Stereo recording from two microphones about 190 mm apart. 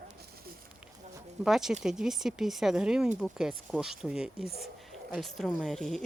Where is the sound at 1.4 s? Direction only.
Centre (ahead or behind).